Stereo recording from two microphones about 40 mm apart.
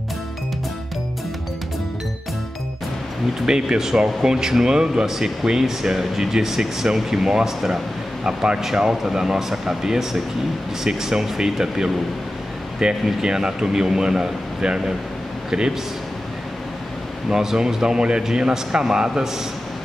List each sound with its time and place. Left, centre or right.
3.3 s a man's voice: centre
17.3 s a man's voice: centre